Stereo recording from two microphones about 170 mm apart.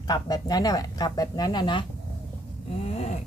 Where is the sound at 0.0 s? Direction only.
25° left (ahead or behind).